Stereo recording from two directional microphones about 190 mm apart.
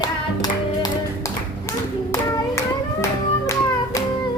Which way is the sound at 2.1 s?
15° left (ahead or behind).